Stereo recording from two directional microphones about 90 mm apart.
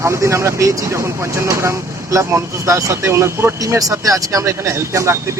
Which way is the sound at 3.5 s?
40° right (ahead or behind).